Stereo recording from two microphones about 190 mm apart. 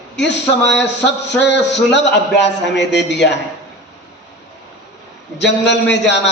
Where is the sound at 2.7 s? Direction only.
65° left (ahead or behind).